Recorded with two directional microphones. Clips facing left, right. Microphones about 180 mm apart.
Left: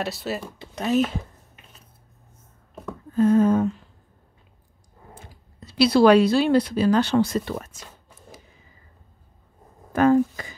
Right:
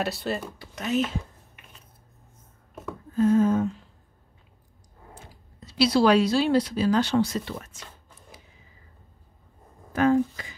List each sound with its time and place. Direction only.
0.0 s speech: centre (ahead or behind)
0.6 s a sound: 35° left (ahead or behind)
3.2 s speech: 60° left (ahead or behind)
5.7 s speech: 60° left (ahead or behind)
9.9 s speech: 50° left (ahead or behind)